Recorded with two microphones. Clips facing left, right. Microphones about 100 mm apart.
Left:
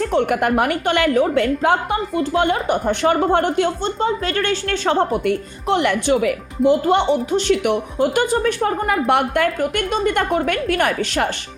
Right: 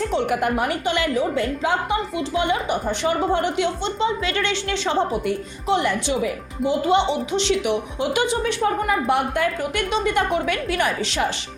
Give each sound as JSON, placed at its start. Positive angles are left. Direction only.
{"t": 0.0, "sound": "a woman's voice", "side_deg": 55}